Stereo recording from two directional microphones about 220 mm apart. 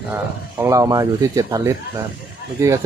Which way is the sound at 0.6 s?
15° right (ahead or behind).